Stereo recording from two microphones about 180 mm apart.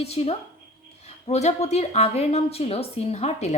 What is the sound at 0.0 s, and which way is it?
Speech, 35° left (ahead or behind).